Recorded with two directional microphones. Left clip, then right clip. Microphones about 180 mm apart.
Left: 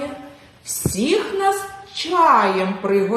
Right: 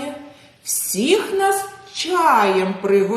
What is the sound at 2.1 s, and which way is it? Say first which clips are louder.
Speech: left 1 dB; 20° right (ahead or behind).